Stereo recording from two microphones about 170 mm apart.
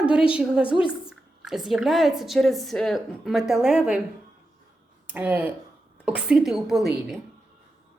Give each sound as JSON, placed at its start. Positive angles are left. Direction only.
{"t": 0.0, "sound": "a woman's voice", "side_deg": -5}
{"t": 5.1, "sound": "a woman's voice", "side_deg": -10}